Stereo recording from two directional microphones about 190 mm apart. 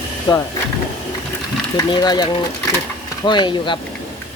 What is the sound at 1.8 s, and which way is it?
Speech, 20° left (ahead or behind).